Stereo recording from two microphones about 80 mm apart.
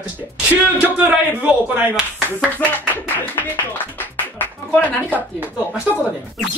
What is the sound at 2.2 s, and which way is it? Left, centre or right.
Speech, left.